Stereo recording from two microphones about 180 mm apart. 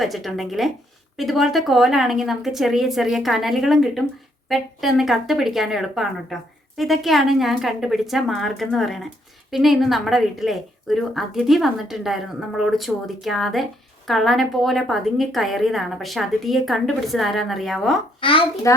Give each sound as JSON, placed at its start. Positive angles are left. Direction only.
{"t": 0.0, "sound": "a woman's voice", "side_deg": 0}
{"t": 18.2, "sound": "a woman's voice", "side_deg": 30}